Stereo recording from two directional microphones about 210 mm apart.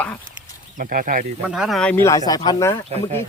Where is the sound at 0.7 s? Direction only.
40° right (ahead or behind).